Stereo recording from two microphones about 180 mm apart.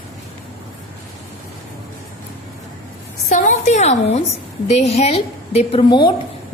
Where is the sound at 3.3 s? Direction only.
45° left (ahead or behind).